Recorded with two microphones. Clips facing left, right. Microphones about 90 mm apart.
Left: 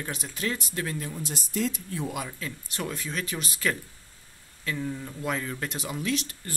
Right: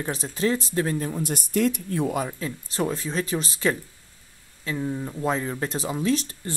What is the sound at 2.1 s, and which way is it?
Speech, 40° right (ahead or behind).